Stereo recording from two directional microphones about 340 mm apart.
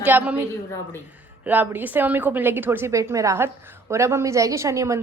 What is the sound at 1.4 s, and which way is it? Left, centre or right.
A woman's voice, centre.